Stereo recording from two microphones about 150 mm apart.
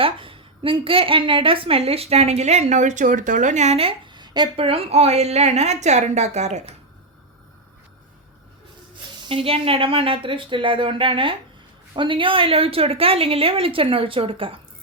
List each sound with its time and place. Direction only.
0.0 s a woman's voice: 35° right (ahead or behind)
9.3 s a woman's voice: 40° right (ahead or behind)